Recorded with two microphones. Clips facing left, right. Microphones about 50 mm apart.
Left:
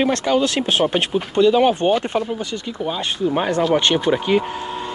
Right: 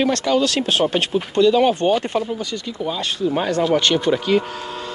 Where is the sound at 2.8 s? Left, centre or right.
Left.